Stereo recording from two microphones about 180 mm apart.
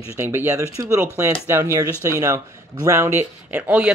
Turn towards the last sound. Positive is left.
turn(degrees=-5)  # may be behind; listen again after turning